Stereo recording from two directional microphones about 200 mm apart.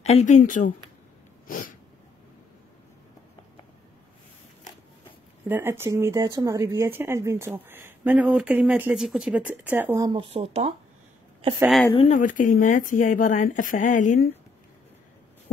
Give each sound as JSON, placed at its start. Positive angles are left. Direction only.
{"t": 0.0, "sound": "speech", "side_deg": 35}
{"t": 1.5, "sound": "a sound", "side_deg": 45}
{"t": 5.5, "sound": "speech", "side_deg": -10}
{"t": 11.6, "sound": "speech", "side_deg": 0}
{"t": 11.9, "sound": "speech", "side_deg": 30}
{"t": 12.2, "sound": "speech", "side_deg": 40}